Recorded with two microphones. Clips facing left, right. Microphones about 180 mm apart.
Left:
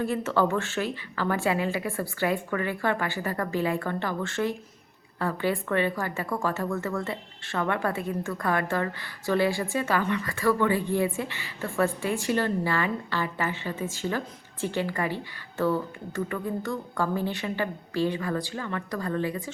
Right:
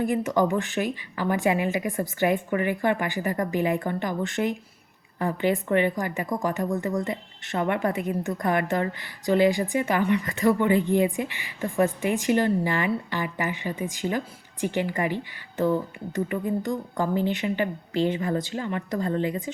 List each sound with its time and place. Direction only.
0.0 s a woman's voice: 15° right (ahead or behind)